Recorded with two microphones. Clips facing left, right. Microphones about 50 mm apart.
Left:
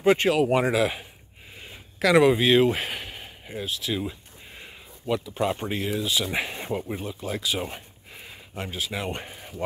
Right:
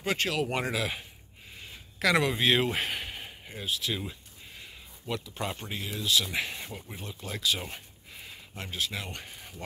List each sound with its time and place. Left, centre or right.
0.0 s speech: left
2.1 s speech: centre
2.4 s speech: centre; by 5.9 s left
5.9 s speech: centre; by 7.0 s left
7.0 s speech: centre
9.0 s speech: left
9.3 s a sound: centre